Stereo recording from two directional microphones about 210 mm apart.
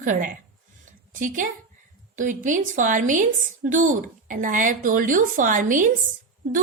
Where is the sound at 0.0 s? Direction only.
40° right (ahead or behind).